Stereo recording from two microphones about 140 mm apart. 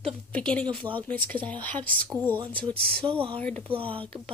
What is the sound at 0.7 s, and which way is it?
Speech, 40° right (ahead or behind).